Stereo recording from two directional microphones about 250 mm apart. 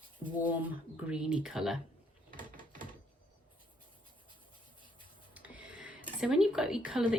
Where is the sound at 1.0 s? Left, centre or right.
Centre.